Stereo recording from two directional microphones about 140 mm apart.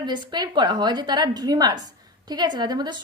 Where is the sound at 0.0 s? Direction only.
30° right (ahead or behind).